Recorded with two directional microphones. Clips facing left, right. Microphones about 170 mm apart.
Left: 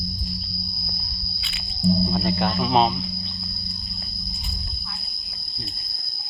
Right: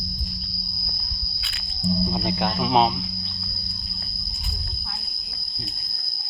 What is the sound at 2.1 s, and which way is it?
Speech, 10° right (ahead or behind).